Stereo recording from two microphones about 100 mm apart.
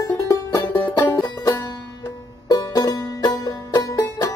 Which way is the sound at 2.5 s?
40° left (ahead or behind).